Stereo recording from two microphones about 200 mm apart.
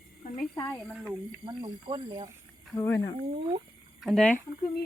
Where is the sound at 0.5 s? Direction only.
15° left (ahead or behind).